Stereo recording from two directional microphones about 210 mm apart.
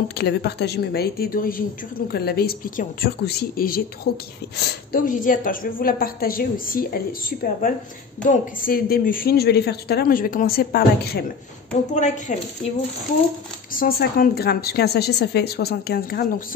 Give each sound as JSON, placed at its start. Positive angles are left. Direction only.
{"t": 0.2, "sound": "a woman's voice", "side_deg": 50}
{"t": 11.9, "sound": "a woman's voice", "side_deg": 35}
{"t": 13.7, "sound": "a woman's voice", "side_deg": 45}